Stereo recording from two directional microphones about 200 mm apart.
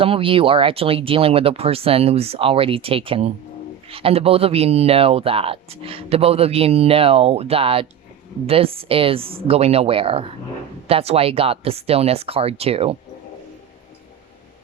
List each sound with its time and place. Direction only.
0.0 s speech: 25° right (ahead or behind)